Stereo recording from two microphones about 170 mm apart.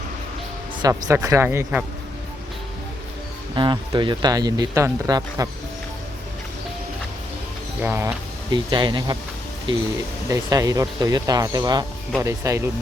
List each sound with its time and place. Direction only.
0.8 s speech: 20° right (ahead or behind)
3.5 s speech: 25° right (ahead or behind)
7.8 s speech: 15° right (ahead or behind)
10.2 s speech: 20° right (ahead or behind)